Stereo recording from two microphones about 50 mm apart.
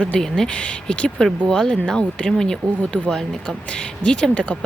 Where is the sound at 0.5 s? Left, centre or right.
Left.